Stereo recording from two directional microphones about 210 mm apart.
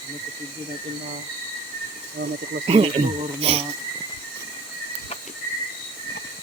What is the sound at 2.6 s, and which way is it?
Speech, 25° right (ahead or behind).